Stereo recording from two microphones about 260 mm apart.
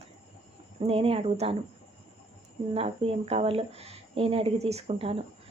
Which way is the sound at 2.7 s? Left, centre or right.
Right.